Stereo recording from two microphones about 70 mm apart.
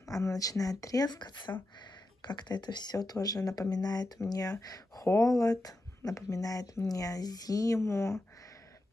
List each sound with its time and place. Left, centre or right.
0.0 s speech: left
4.2 s speech: left
5.0 s speech: left
7.8 s speech: left